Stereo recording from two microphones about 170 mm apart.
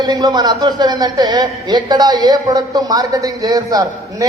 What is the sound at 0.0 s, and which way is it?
A woman's voice, 25° right (ahead or behind).